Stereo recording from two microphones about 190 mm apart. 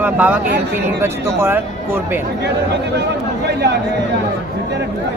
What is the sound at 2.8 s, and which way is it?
Speech, 60° right (ahead or behind).